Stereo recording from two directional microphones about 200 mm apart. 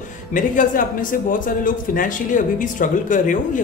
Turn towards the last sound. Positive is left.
turn(degrees=40)  # may be behind; listen again after turning